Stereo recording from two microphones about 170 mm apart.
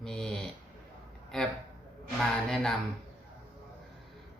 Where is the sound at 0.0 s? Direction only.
5° left (ahead or behind).